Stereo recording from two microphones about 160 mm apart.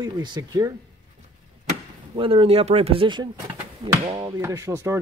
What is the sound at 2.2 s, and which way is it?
Speech, 35° right (ahead or behind).